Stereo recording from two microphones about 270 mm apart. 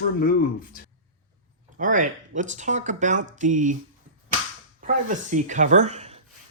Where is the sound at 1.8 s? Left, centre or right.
Right.